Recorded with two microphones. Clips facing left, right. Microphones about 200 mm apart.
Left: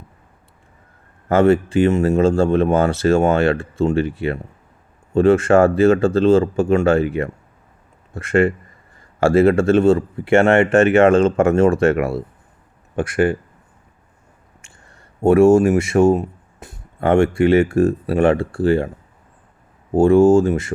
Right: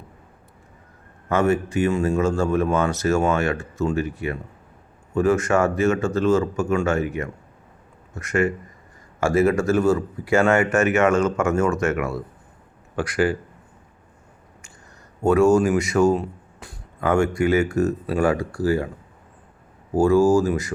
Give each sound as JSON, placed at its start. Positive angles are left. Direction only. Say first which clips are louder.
{"t": 1.4, "sound": "speech", "louder": "left 6 dB", "side_deg": 30}
{"t": 15.2, "sound": "speech", "louder": "left 5 dB", "side_deg": 30}
{"t": 19.9, "sound": "speech", "louder": "left 5 dB", "side_deg": 25}